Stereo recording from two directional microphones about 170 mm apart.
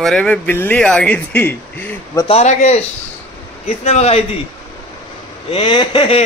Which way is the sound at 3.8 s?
40° left (ahead or behind).